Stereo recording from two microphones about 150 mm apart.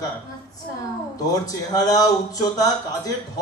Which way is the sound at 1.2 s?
25° left (ahead or behind).